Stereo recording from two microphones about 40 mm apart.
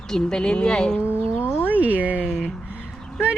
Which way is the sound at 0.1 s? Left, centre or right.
Centre.